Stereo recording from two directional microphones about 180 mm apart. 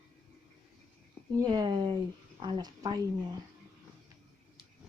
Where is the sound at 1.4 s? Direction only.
25° right (ahead or behind).